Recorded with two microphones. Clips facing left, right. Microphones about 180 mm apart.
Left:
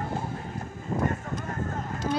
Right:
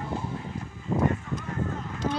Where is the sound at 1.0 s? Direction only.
45° left (ahead or behind).